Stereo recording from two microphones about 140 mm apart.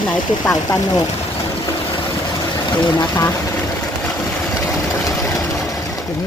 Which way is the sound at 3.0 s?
25° left (ahead or behind).